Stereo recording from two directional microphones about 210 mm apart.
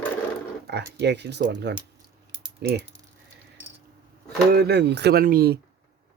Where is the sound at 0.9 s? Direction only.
55° right (ahead or behind).